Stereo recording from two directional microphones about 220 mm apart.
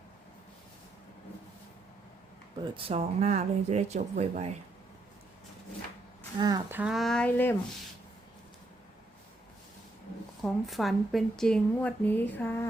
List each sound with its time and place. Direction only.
2.7 s speech: 25° right (ahead or behind)
6.4 s a woman's voice: 15° right (ahead or behind); by 7.5 s 5° left (ahead or behind)
10.4 s a woman's voice: centre (ahead or behind)